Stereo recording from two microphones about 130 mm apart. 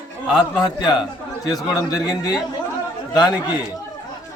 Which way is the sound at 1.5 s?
30° left (ahead or behind).